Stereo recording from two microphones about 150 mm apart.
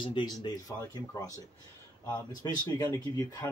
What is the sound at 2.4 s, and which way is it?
Speech, 25° left (ahead or behind).